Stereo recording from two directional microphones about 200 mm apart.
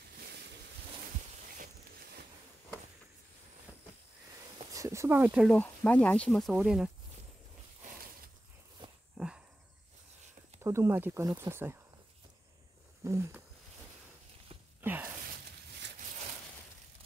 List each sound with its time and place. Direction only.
0.1 s boat: 50° right (ahead or behind)
4.6 s speech: 15° right (ahead or behind)
9.1 s walk: 5° right (ahead or behind)
10.6 s speech: 15° right (ahead or behind)
13.0 s a sound: 15° right (ahead or behind)
14.8 s a sound: 10° right (ahead or behind)